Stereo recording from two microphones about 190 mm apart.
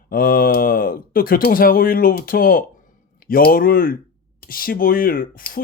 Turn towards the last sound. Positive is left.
turn(degrees=50)  # may be behind; listen again after turning